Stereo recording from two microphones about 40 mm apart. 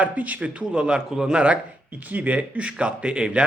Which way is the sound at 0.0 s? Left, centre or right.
Right.